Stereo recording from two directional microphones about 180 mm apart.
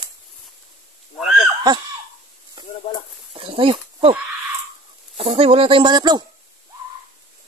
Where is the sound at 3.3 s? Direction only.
30° right (ahead or behind).